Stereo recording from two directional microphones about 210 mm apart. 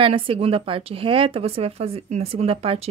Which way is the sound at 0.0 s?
25° right (ahead or behind).